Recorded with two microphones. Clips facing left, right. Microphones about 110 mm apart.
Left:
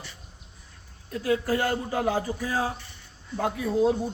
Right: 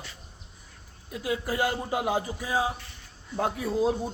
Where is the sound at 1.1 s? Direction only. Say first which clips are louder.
Left 5 dB; 15° right (ahead or behind).